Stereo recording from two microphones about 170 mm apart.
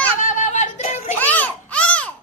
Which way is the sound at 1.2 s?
10° left (ahead or behind).